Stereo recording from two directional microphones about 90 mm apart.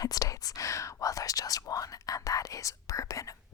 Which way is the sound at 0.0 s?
40° left (ahead or behind).